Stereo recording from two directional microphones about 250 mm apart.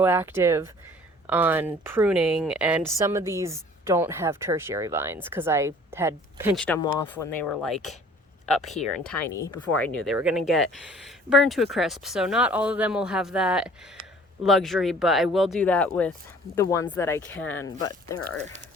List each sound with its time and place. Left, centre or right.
0.0 s speech: centre
6.7 s speech: centre
7.4 s speech: centre